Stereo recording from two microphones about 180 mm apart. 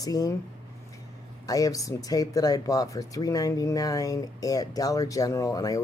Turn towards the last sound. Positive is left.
turn(degrees=20)  # may be behind; listen again after turning